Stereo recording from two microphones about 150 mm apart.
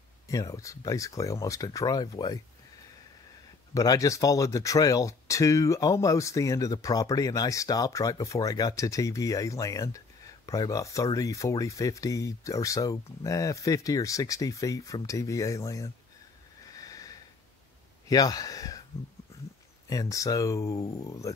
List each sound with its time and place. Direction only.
0.3 s speech: 20° left (ahead or behind)
3.7 s speech: 25° left (ahead or behind)
16.6 s sniff: 25° left (ahead or behind)
18.0 s speech: 25° left (ahead or behind)
19.9 s speech: 20° left (ahead or behind)